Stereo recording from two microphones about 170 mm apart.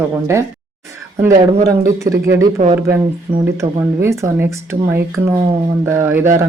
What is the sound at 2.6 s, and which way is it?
Speech, 50° right (ahead or behind).